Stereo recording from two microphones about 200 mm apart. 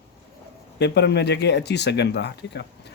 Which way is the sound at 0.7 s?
55° left (ahead or behind).